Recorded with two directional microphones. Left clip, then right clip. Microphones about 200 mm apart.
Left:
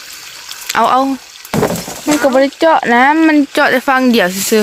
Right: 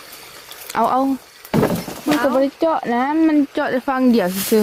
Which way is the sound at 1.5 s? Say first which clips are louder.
Left 4 dB; 45° left (ahead or behind).